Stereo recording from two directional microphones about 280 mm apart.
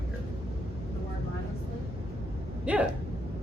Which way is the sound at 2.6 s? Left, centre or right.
Centre.